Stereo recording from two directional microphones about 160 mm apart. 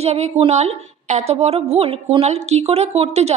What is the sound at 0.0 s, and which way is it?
Speech, 40° right (ahead or behind).